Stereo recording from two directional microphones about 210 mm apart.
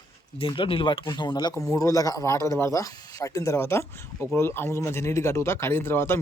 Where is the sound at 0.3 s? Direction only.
25° left (ahead or behind).